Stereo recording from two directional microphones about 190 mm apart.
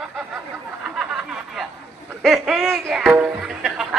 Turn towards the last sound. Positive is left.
turn(degrees=0)  # may be behind; listen again after turning